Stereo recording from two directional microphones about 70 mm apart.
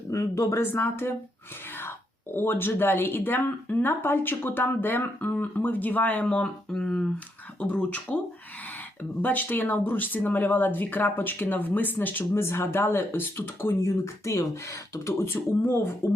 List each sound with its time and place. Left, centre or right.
0.1 s speech: left
0.6 s speech: left
9.2 s speech: left
13.8 s speech: left